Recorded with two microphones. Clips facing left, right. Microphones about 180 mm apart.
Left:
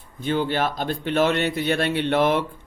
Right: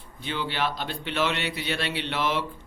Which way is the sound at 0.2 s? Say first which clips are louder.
Left 7 dB; 45° left (ahead or behind).